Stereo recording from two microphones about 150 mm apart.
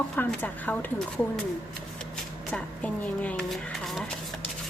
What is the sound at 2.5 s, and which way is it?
Speech, 10° left (ahead or behind).